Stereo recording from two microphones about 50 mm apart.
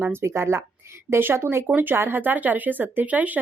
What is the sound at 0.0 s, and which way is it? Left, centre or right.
Speech, right.